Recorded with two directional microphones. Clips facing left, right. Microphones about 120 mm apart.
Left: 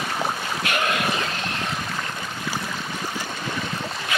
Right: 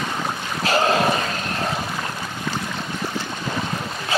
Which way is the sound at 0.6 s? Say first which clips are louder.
Right 7 dB; 30° right (ahead or behind).